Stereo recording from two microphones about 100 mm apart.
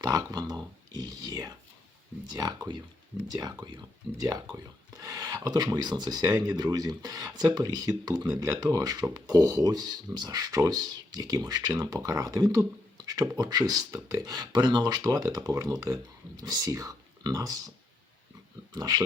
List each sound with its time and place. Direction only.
0.0 s speech: 40° right (ahead or behind)
3.6 s speech: 45° right (ahead or behind)
18.7 s speech: 40° right (ahead or behind)